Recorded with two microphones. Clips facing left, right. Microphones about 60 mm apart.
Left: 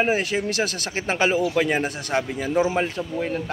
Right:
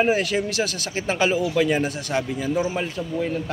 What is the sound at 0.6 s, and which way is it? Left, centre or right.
A man's voice, left.